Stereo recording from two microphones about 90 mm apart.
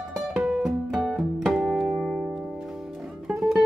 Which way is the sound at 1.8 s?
15° right (ahead or behind).